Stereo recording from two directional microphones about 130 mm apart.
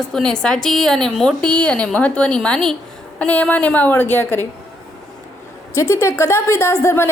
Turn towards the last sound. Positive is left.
turn(degrees=20)  # may be behind; listen again after turning